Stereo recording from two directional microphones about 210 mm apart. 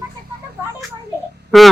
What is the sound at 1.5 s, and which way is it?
Speech, centre (ahead or behind).